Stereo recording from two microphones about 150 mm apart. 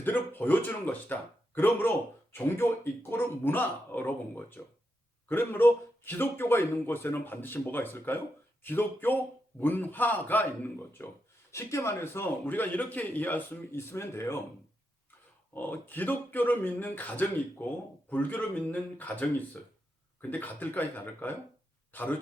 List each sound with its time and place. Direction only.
0.0 s a man's voice: 10° left (ahead or behind)
15.5 s a man's voice: 10° left (ahead or behind)